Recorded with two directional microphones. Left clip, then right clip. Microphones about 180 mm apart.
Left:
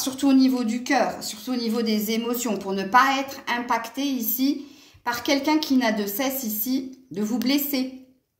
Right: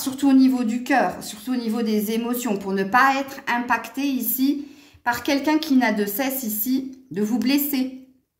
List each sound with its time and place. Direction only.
0.0 s a woman's voice: 40° right (ahead or behind)